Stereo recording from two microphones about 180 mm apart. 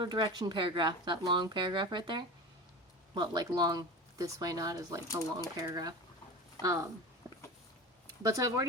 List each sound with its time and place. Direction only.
0.0 s speech: 25° right (ahead or behind)
7.2 s dog: 15° right (ahead or behind)
8.2 s speech: 20° right (ahead or behind)